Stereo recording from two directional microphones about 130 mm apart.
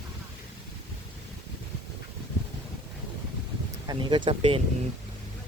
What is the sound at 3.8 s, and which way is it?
Speech, 35° right (ahead or behind).